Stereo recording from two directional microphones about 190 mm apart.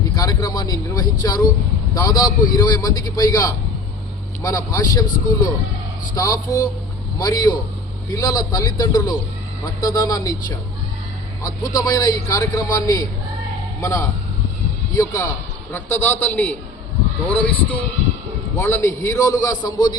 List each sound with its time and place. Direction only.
0.2 s vehicle: 20° left (ahead or behind)
1.2 s a man's voice: 20° left (ahead or behind)
14.9 s a man's voice: 15° left (ahead or behind)